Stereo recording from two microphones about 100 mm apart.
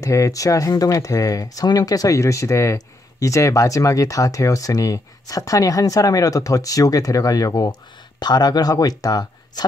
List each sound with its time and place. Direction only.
0.0 s speech: 35° left (ahead or behind)